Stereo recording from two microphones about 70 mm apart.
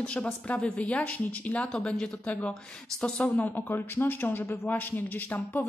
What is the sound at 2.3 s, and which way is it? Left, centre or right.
Speech, left.